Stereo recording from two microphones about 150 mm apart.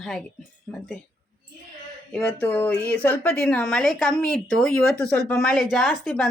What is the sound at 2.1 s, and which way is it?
A woman's voice, 10° left (ahead or behind).